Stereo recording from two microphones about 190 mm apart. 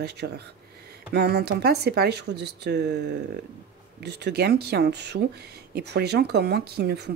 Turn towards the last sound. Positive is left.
turn(degrees=-60)  # may be behind; listen again after turning